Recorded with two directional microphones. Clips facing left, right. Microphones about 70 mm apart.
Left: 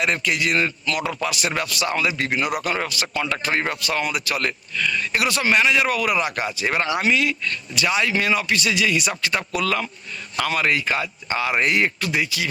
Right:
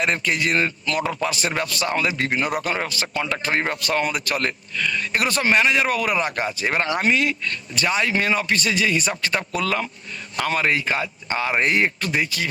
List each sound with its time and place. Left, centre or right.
0.0 s a man's voice: right